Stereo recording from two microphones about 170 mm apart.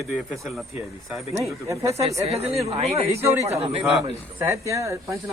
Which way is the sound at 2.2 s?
35° right (ahead or behind).